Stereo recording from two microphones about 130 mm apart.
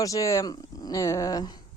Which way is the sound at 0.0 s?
25° left (ahead or behind).